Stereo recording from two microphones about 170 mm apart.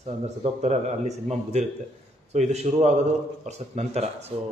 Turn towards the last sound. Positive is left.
turn(degrees=-35)  # may be behind; listen again after turning